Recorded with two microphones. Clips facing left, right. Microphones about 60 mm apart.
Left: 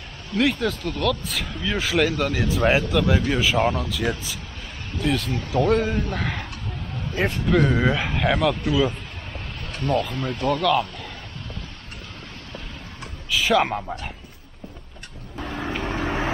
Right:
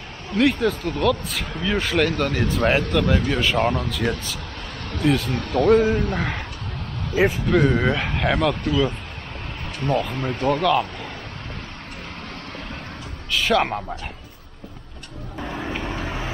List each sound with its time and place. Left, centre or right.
0.4 s speech: centre
4.0 s speech: centre
5.0 s speech: centre
5.3 s speech: right
5.7 s speech: centre
13.3 s speech: centre
15.3 s vehicle: centre